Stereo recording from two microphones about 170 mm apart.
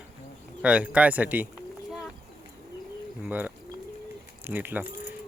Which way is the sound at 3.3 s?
10° right (ahead or behind).